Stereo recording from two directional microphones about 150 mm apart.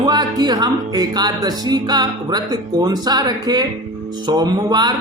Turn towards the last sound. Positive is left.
turn(degrees=-25)  # may be behind; listen again after turning